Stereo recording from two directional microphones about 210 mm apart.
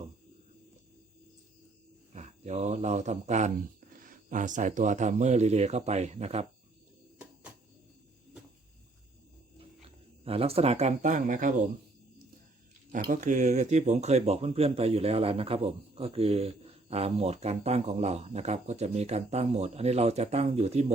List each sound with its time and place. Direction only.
2.1 s speech: 35° right (ahead or behind)
10.2 s speech: 30° right (ahead or behind)
12.9 s speech: 35° right (ahead or behind)